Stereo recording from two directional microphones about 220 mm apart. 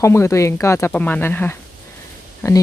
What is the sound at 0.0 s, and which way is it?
Speech, 10° left (ahead or behind).